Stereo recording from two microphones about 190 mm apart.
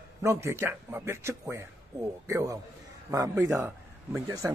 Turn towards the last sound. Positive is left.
turn(degrees=-15)  # may be behind; listen again after turning